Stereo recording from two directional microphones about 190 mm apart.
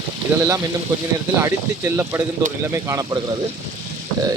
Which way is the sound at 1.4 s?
15° right (ahead or behind).